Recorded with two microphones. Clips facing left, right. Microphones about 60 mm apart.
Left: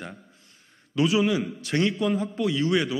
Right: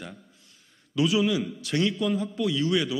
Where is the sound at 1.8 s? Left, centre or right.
Left.